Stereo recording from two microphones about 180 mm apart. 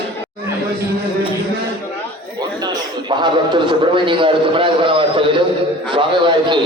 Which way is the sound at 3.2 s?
25° right (ahead or behind).